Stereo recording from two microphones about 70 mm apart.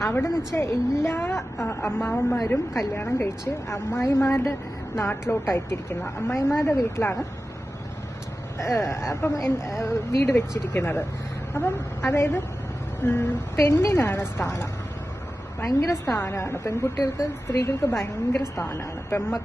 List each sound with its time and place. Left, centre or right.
0.0 s a woman's voice: left
3.4 s a woman's voice: left
8.5 s a woman's voice: left
15.6 s a woman's voice: left